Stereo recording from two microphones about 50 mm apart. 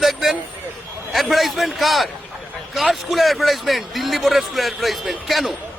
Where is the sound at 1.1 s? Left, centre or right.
Centre.